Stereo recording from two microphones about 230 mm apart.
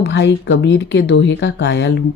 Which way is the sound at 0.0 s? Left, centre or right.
Left.